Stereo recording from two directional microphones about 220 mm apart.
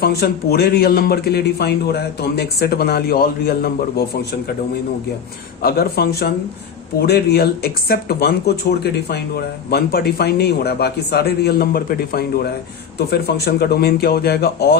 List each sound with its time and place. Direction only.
0.0 s speech: 45° left (ahead or behind)
5.6 s speech: 45° left (ahead or behind)